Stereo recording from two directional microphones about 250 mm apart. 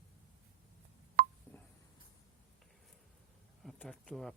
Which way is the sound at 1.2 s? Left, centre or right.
Right.